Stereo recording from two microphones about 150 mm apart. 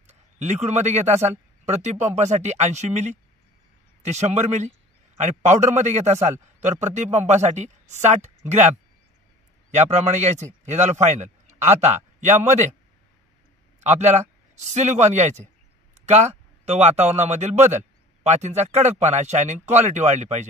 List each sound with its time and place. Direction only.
0.4 s a man's voice: 50° right (ahead or behind)
9.8 s a man's voice: 50° right (ahead or behind)
13.7 s a man's voice: 50° right (ahead or behind)